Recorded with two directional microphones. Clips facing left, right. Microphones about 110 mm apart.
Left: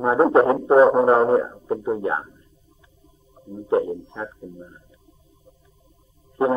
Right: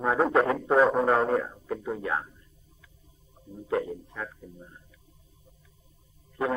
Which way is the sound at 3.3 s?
30° left (ahead or behind).